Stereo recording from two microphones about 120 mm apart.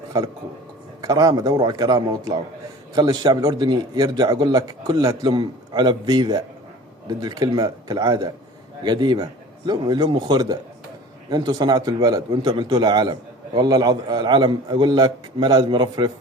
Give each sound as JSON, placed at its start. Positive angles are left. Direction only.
{"t": 1.0, "sound": "a man's voice", "side_deg": -30}